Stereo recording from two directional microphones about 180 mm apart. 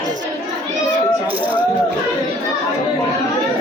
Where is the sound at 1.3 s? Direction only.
10° right (ahead or behind).